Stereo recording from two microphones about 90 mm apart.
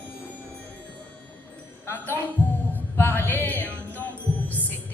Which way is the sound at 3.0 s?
25° left (ahead or behind).